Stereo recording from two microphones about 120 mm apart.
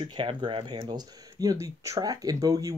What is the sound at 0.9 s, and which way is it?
Speech, 30° right (ahead or behind).